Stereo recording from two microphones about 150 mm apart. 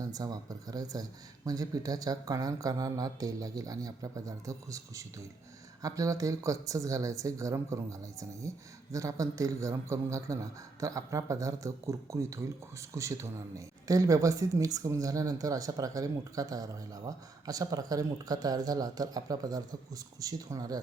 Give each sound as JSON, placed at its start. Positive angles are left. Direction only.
{"t": 0.0, "sound": "speech", "side_deg": -25}